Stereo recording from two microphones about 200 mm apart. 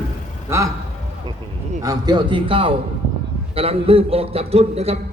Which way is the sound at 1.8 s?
20° right (ahead or behind).